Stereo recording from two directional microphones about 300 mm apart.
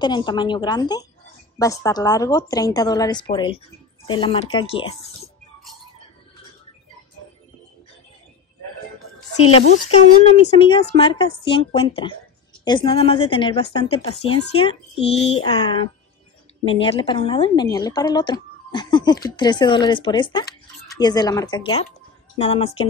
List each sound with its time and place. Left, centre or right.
0.0 s a woman's voice: centre
9.4 s a woman's voice: centre